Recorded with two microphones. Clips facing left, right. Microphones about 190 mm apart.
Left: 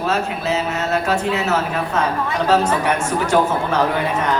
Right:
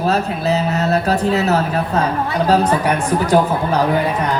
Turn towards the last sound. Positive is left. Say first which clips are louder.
# right 2 dB
turn(degrees=-35)  # may be behind; listen again after turning